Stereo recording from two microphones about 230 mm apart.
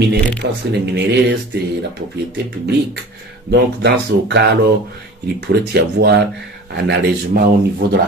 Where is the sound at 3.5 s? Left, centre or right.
Right.